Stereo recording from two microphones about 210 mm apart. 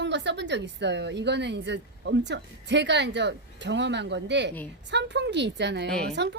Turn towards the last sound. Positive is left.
turn(degrees=-55)  # may be behind; listen again after turning